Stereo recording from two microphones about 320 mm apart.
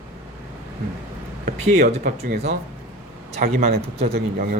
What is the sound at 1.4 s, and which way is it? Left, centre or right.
Speech, right.